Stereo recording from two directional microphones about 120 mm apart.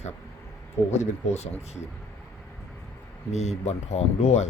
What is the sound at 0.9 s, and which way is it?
Speech, 65° left (ahead or behind).